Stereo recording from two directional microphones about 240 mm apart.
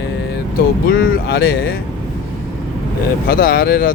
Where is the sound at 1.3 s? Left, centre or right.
Left.